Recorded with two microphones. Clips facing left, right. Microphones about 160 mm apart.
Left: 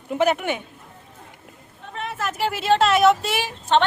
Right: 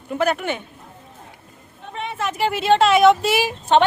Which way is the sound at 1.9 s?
Centre (ahead or behind).